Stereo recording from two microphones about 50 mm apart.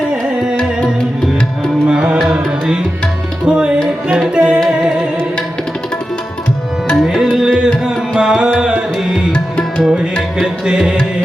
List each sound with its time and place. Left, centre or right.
0.1 s music: centre
1.9 s music: centre
7.0 s tabla: centre
7.9 s music: centre
8.5 s tabla: centre
9.3 s tabla: centre
10.4 s music: centre